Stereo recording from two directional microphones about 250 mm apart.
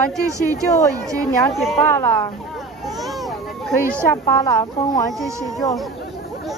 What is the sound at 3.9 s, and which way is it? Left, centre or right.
Speech, centre.